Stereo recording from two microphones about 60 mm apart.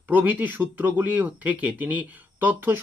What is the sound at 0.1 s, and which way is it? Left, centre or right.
Speech, right.